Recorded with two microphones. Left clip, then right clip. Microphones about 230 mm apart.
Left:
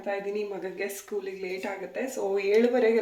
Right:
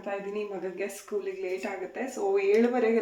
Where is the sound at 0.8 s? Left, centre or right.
Centre.